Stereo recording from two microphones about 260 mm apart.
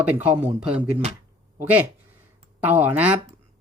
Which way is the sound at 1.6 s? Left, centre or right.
Centre.